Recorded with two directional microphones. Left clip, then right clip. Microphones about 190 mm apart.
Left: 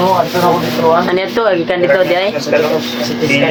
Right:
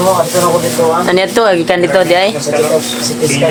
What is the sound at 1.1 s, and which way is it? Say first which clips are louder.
Speech: right 3 dB; 35° right (ahead or behind).